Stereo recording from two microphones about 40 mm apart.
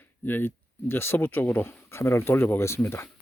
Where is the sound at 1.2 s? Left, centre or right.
Left.